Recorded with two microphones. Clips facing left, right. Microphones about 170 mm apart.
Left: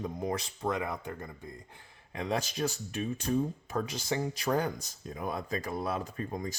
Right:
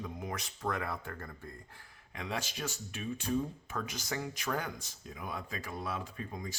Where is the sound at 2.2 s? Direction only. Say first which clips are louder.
Left 7 dB; 40° left (ahead or behind).